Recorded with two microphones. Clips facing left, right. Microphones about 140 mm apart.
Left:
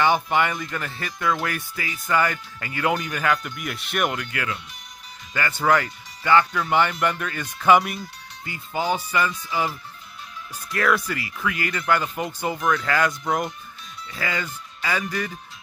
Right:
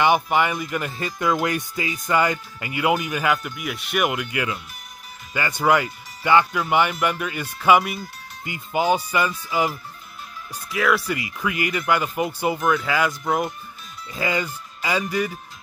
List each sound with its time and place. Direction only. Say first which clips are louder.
0.0 s speech: right 2 dB; 15° right (ahead or behind)
8.5 s speech: right 4 dB; 15° right (ahead or behind)
11.1 s speech: right 2 dB; 15° right (ahead or behind)
14.1 s speech: right 4 dB; 20° right (ahead or behind)